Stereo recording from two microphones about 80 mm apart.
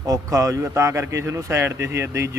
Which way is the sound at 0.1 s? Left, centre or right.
Right.